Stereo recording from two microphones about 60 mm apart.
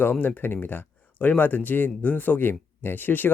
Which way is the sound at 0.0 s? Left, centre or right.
Left.